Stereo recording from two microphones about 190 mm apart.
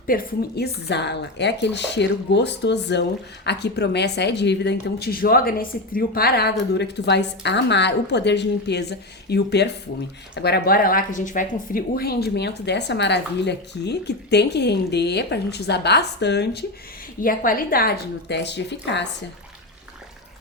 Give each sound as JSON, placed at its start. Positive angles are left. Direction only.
{"t": 0.1, "sound": "speech", "side_deg": 55}
{"t": 17.2, "sound": "speech", "side_deg": 50}